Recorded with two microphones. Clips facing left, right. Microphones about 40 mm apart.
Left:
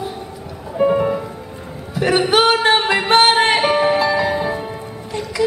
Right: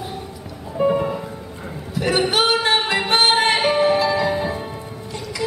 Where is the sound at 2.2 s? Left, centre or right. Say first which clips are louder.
Left 6 dB; left.